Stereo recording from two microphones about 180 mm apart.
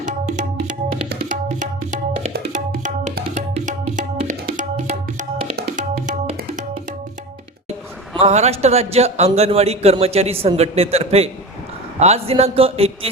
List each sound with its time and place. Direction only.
1.3 s tabla: 45° right (ahead or behind)
3.3 s music: 45° right (ahead or behind)
5.7 s tabla: 45° right (ahead or behind)
8.2 s a man's voice: 35° right (ahead or behind)